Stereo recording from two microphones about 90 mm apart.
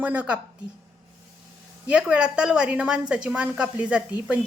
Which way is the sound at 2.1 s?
10° right (ahead or behind).